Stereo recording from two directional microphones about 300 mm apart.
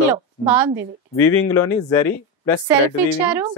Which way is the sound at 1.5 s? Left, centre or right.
Centre.